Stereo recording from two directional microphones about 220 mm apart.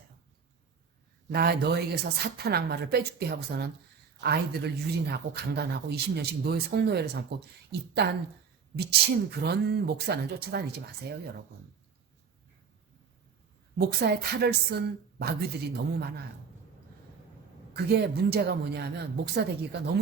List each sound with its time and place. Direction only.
1.3 s speech: 45° right (ahead or behind)
13.7 s speech: 45° right (ahead or behind)
17.7 s speech: 50° right (ahead or behind)